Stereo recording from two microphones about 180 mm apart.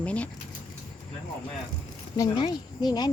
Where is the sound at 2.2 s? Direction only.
25° left (ahead or behind).